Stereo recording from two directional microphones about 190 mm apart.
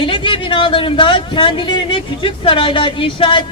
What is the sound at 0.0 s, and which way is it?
Speech, 25° left (ahead or behind).